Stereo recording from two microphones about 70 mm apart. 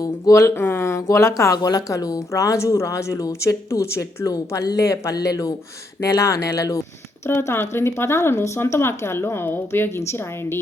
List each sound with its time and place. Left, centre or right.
0.0 s speech: left
0.4 s speech: left
1.5 s speech: left
4.3 s speech: left
5.1 s speech: left
7.3 s speech: left